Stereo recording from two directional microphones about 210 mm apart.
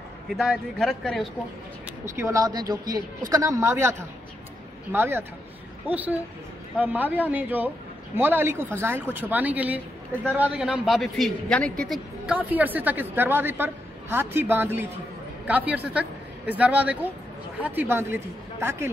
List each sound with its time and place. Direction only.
0.3 s speech: centre (ahead or behind)
2.0 s a man's voice: 15° right (ahead or behind)
4.9 s a man's voice: 10° right (ahead or behind)